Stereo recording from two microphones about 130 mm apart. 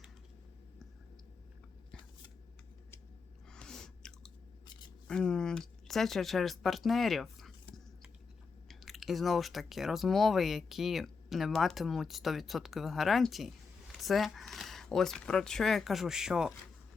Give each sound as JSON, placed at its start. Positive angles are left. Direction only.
{"t": 3.5, "sound": "chewing", "side_deg": 5}
{"t": 4.6, "sound": "a sound", "side_deg": 35}
{"t": 5.0, "sound": "speech", "side_deg": 5}